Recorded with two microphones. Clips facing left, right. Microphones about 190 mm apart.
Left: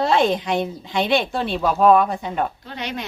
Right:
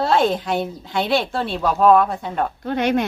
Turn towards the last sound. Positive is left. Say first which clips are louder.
# right 11 dB
turn(degrees=-50)  # may be behind; listen again after turning